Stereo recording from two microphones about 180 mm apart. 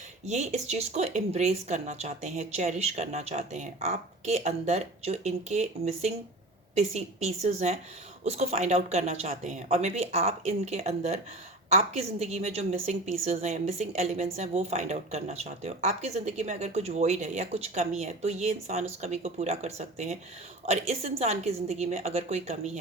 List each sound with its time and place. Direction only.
0.3 s a woman's voice: 40° right (ahead or behind)